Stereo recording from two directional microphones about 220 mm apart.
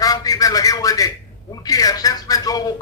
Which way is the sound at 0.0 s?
15° left (ahead or behind).